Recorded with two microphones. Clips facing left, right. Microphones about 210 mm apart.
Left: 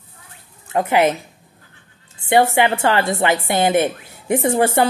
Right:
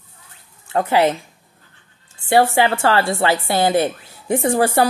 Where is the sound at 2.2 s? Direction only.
20° left (ahead or behind).